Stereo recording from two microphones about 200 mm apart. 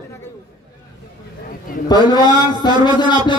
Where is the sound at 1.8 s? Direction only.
20° left (ahead or behind).